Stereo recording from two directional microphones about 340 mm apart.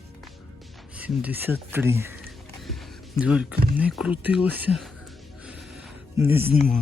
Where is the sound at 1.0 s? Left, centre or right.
Centre.